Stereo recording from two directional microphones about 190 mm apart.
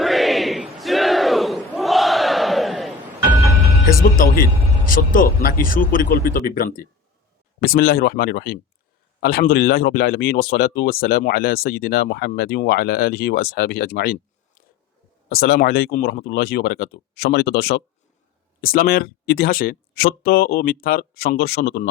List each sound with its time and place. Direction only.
0.0 s battle cry: centre (ahead or behind)
4.9 s speech: 50° left (ahead or behind)
15.3 s speech: 55° left (ahead or behind)